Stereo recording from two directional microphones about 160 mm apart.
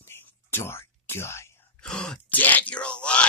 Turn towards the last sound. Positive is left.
turn(degrees=5)  # may be behind; listen again after turning